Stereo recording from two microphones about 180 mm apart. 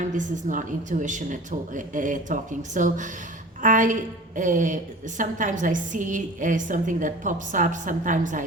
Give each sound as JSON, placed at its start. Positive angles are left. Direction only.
{"t": 0.1, "sound": "a woman's voice", "side_deg": -45}